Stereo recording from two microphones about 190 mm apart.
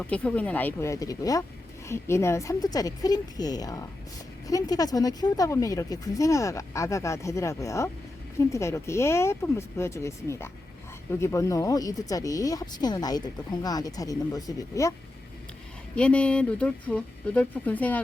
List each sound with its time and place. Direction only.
0.0 s speech: 5° left (ahead or behind)
16.0 s speech: 5° left (ahead or behind)